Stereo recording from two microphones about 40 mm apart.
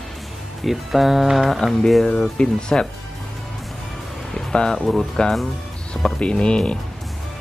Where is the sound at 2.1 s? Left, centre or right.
Left.